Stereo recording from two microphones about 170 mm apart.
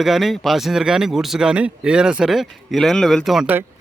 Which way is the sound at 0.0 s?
Centre (ahead or behind).